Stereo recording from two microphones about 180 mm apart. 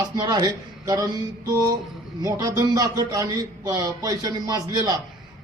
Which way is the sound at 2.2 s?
20° right (ahead or behind).